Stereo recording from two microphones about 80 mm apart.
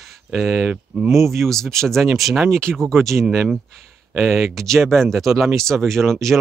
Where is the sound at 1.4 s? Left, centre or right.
Centre.